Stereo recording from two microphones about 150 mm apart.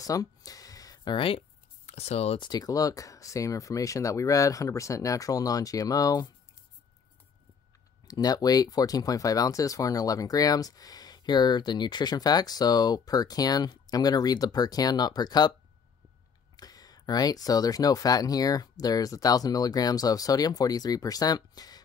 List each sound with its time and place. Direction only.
0.0 s a sound: 25° left (ahead or behind)
1.9 s speech: 45° left (ahead or behind)
2.4 s speech: 25° left (ahead or behind)
8.1 s speech: 25° left (ahead or behind)
16.5 s speech: 25° left (ahead or behind)